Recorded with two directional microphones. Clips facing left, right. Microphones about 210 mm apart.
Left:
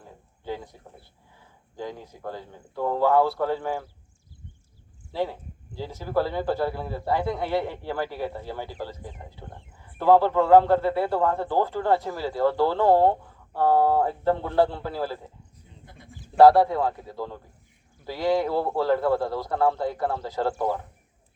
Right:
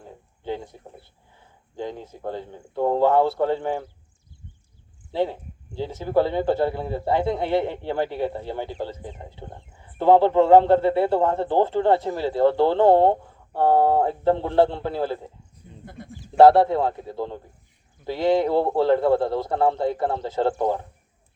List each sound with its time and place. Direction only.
0.4 s a sound: 25° right (ahead or behind)
1.7 s a man's voice: 25° right (ahead or behind)
5.1 s a man's voice: 25° right (ahead or behind)
16.4 s a man's voice: 25° right (ahead or behind)